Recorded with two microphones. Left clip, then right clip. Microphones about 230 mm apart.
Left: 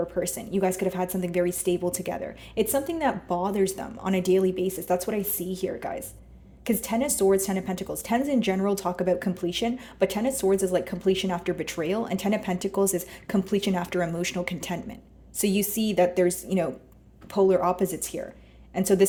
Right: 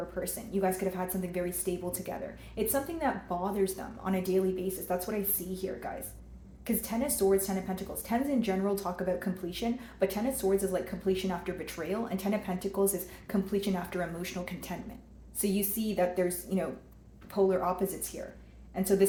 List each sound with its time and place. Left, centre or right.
0.2 s a woman's voice: left
6.7 s a woman's voice: left